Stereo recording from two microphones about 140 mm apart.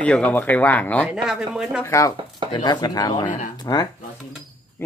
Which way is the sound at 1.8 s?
20° left (ahead or behind).